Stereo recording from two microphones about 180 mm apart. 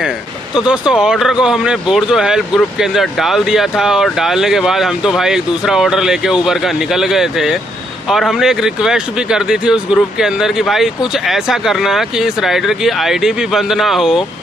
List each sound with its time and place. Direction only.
0.6 s speech: 5° right (ahead or behind)